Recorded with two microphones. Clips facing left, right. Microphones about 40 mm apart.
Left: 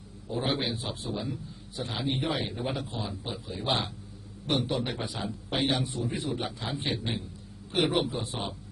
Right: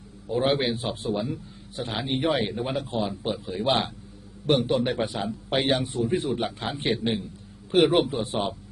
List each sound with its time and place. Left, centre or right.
0.3 s a man's voice: right